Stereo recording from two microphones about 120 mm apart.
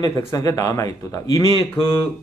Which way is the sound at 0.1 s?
25° left (ahead or behind).